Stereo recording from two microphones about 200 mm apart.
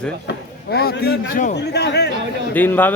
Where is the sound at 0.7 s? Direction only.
50° left (ahead or behind).